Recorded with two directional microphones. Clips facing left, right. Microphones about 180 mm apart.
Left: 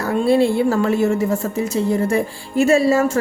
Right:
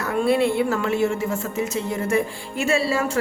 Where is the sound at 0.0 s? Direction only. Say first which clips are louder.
Left 4 dB; 30° left (ahead or behind).